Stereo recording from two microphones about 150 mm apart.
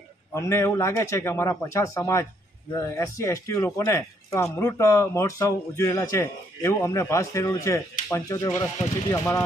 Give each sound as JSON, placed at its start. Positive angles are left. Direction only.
{"t": 0.3, "sound": "a man's voice", "side_deg": 20}